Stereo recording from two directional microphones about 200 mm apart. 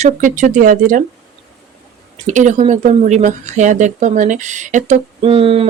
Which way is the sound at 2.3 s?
40° right (ahead or behind).